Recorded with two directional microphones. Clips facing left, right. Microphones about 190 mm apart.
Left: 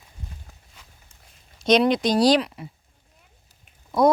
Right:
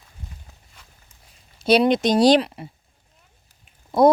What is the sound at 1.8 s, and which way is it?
Speech, 20° right (ahead or behind).